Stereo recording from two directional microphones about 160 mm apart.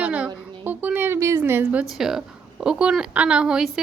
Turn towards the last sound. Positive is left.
turn(degrees=-5)  # may be behind; listen again after turning